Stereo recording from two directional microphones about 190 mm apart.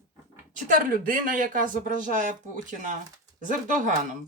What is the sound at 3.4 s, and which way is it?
Speech, 40° right (ahead or behind).